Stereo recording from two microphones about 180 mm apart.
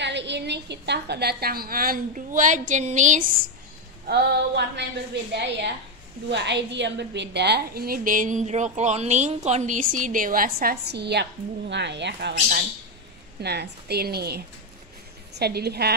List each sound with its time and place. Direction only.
0.0 s a woman's voice: 75° right (ahead or behind); by 3.3 s 45° right (ahead or behind)
4.1 s female singing: 70° right (ahead or behind)
6.3 s a woman's voice: 75° right (ahead or behind)